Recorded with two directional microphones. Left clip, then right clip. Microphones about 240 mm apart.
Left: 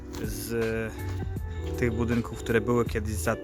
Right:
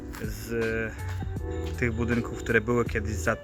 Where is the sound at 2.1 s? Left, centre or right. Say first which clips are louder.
Right 1 dB; centre.